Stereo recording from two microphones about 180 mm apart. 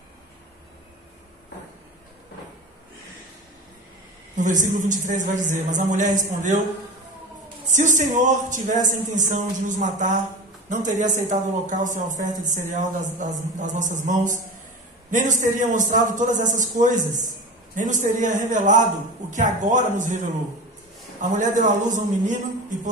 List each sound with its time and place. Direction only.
4.4 s speech: 45° right (ahead or behind)
7.7 s speech: 45° right (ahead or behind)
21.3 s speech: 45° right (ahead or behind)